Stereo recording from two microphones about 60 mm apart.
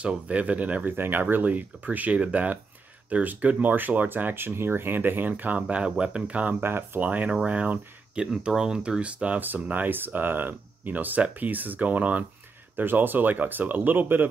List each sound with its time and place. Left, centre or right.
0.0 s speech: right
0.9 s speech: right
6.6 s speech: right
7.0 s speech: right
8.3 s speech: centre; by 14.2 s right